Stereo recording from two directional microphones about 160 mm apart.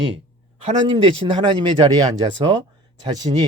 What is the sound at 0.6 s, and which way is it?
Speech, 40° right (ahead or behind).